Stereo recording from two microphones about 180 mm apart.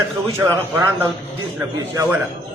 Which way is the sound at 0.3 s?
20° right (ahead or behind).